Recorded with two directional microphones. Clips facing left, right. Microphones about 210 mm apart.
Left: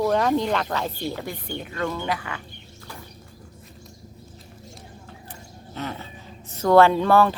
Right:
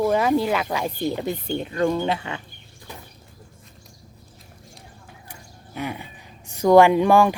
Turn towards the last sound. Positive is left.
turn(degrees=-15)  # may be behind; listen again after turning